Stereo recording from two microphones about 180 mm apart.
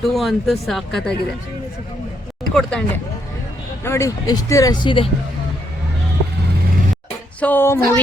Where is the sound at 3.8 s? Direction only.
15° left (ahead or behind).